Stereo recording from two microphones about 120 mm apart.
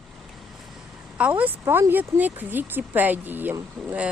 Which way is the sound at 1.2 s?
10° right (ahead or behind).